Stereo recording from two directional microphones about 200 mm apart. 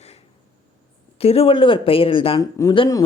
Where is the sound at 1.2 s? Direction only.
30° left (ahead or behind).